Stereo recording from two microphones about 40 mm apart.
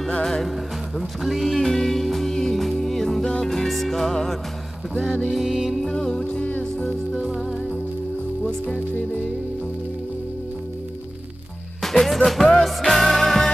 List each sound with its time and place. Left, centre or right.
0.2 s music: centre
0.9 s music: centre
5.3 s music: centre
5.9 s music: centre
6.2 s music: left
7.2 s music: centre
11.8 s music: centre